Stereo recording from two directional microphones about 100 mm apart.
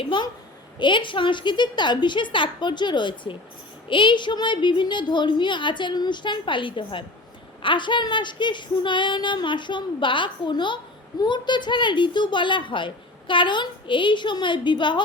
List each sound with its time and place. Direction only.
0.0 s a woman's voice: 50° left (ahead or behind)